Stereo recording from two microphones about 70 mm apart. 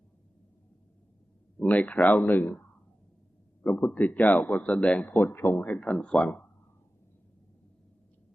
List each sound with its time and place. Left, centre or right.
1.5 s a man's voice: left
5.0 s a man's voice: left